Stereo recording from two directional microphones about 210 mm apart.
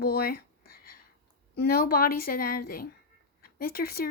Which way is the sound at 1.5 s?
45° left (ahead or behind).